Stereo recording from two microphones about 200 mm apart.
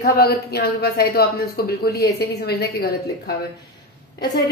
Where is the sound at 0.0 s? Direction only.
55° left (ahead or behind).